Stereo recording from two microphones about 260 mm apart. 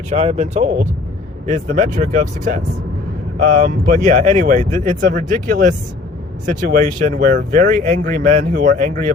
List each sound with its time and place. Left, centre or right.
0.1 s speech: right